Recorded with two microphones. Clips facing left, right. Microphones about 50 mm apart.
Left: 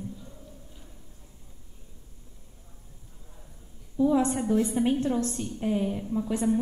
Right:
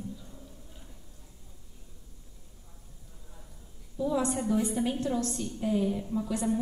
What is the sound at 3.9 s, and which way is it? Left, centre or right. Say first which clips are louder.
A woman's voice: left 5 dB; left.